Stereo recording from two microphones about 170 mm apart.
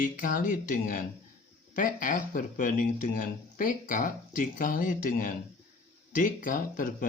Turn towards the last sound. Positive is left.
turn(degrees=55)  # may be behind; listen again after turning